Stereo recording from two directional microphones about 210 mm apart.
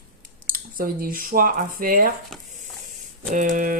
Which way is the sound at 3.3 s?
40° right (ahead or behind).